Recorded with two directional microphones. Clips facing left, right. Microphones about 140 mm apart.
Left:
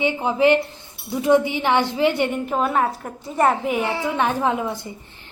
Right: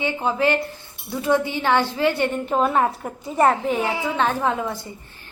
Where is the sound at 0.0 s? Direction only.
15° left (ahead or behind).